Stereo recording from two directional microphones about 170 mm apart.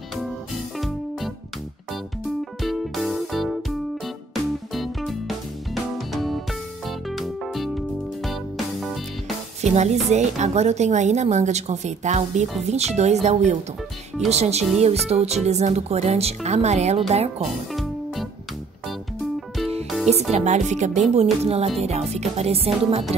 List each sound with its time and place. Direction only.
0.7 s music: centre (ahead or behind)
2.6 s music: centre (ahead or behind)
9.6 s a woman's voice: 40° right (ahead or behind)
20.1 s a woman's voice: 40° right (ahead or behind)